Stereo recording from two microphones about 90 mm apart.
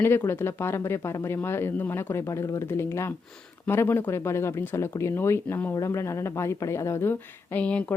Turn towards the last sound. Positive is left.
turn(degrees=15)  # may be behind; listen again after turning